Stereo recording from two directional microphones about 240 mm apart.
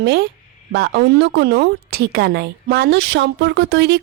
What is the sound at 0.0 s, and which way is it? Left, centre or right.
A woman's voice, right.